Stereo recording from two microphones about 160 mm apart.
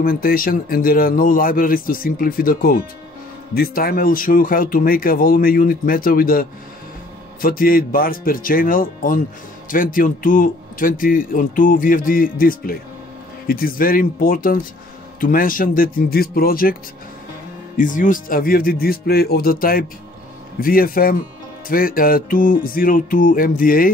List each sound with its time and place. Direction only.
0.0 s a man's voice: 65° left (ahead or behind)
7.4 s a man's voice: 65° left (ahead or behind)
17.7 s a man's voice: 55° left (ahead or behind)